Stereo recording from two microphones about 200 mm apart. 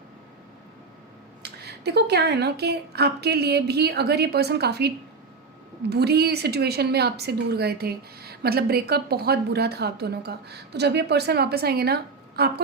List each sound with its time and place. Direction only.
1.4 s a woman's voice: 55° right (ahead or behind)